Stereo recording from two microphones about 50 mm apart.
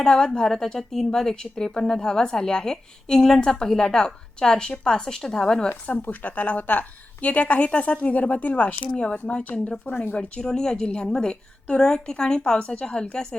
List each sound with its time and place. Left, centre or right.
0.0 s a woman's voice: centre
5.9 s a woman's voice: left
8.9 s a woman's voice: centre
9.8 s speech: left
10.2 s a woman's voice: centre